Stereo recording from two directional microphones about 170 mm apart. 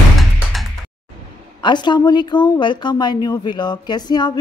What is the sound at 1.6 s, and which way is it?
A woman's voice, 25° left (ahead or behind).